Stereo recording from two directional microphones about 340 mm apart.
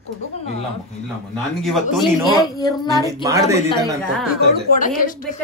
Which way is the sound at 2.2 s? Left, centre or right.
Centre.